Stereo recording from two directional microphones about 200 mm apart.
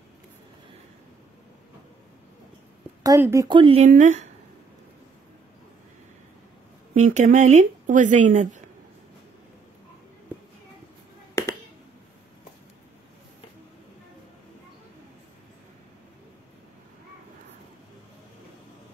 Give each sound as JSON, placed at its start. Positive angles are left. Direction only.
{"t": 3.0, "sound": "speech", "side_deg": -15}
{"t": 6.9, "sound": "speech", "side_deg": -40}
{"t": 11.4, "sound": "a sound", "side_deg": 15}